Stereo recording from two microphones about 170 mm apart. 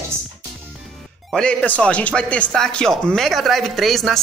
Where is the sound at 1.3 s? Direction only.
5° left (ahead or behind).